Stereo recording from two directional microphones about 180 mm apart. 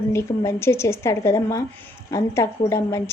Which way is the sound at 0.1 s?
15° left (ahead or behind).